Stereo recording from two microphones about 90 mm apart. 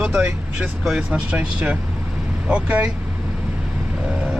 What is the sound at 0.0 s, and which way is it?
Speech, 10° right (ahead or behind).